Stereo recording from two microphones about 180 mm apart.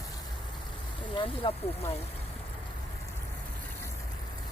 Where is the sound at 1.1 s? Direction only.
30° left (ahead or behind).